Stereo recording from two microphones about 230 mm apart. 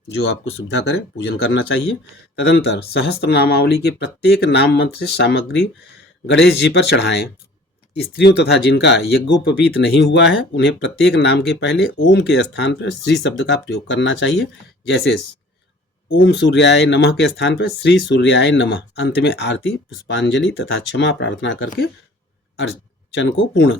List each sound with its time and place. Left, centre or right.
0.8 s speech: left
23.1 s speech: left